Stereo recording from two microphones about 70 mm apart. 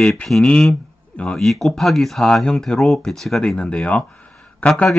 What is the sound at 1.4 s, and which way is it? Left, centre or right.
Speech, centre.